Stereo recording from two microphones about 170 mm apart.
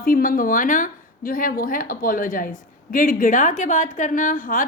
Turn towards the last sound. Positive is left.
turn(degrees=50)  # may be behind; listen again after turning